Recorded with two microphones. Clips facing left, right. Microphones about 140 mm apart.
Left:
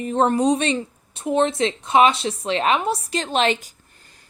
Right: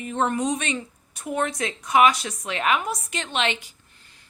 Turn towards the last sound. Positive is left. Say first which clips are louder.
# left 6 dB
turn(degrees=40)  # may be behind; listen again after turning